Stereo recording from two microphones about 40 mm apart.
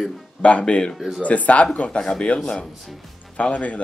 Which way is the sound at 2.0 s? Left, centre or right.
Left.